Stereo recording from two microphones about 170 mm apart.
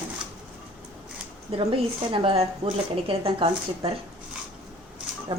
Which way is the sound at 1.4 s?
35° right (ahead or behind).